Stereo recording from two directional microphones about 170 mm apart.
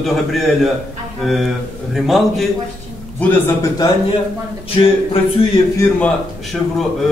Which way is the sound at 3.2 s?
15° left (ahead or behind).